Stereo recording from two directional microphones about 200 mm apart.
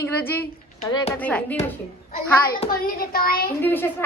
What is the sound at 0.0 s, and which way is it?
Speech, 10° left (ahead or behind).